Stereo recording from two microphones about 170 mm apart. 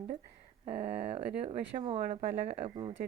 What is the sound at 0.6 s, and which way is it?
Speech, 40° right (ahead or behind).